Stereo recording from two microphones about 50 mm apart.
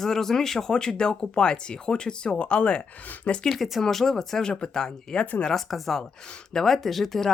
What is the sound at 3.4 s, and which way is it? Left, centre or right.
Speech, centre.